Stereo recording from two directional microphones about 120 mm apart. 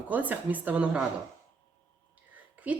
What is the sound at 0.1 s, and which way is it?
Speech, 15° right (ahead or behind).